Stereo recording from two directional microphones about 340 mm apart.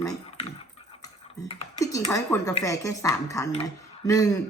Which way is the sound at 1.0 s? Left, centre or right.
Centre.